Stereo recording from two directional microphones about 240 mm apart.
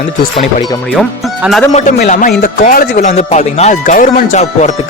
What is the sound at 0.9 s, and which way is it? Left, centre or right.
Speech, centre.